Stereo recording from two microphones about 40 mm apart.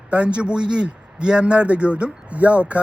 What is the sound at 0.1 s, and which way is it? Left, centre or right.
Speech, right.